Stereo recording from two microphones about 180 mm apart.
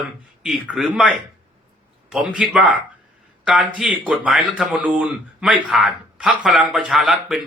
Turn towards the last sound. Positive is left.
turn(degrees=0)  # may be behind; listen again after turning